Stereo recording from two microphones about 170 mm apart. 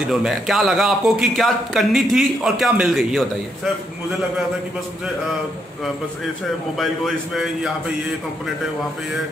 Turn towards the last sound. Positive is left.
turn(degrees=0)  # may be behind; listen again after turning